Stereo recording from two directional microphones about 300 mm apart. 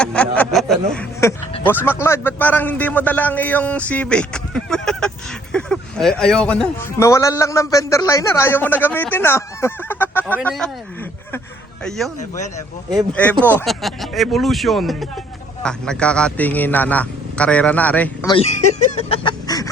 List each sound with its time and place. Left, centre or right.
0.0 s a sound: centre
1.6 s a man's voice: centre
11.9 s a man's voice: centre
13.4 s a man's voice: centre
18.3 s speech: centre